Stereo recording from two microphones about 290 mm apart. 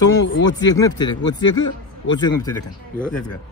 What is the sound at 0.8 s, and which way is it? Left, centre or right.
Speech, centre.